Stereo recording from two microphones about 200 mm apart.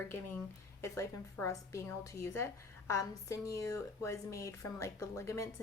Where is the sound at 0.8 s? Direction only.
15° left (ahead or behind).